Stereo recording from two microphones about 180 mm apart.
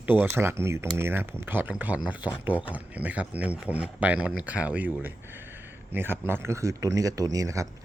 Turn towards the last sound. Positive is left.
turn(degrees=-15)  # may be behind; listen again after turning